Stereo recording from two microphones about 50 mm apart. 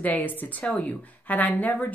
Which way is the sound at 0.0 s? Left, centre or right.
Left.